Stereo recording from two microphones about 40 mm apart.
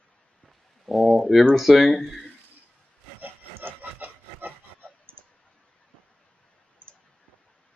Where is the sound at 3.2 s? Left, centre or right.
Right.